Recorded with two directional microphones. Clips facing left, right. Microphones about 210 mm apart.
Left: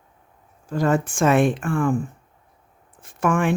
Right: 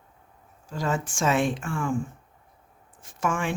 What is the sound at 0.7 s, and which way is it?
Speech, 55° left (ahead or behind).